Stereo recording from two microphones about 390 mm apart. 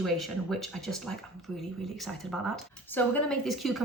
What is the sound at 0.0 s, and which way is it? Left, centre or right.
Speech, centre.